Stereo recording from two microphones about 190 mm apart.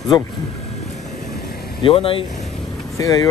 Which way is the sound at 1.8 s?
30° left (ahead or behind).